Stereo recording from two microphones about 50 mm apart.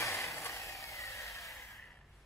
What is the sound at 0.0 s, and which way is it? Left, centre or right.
Vehicle, left.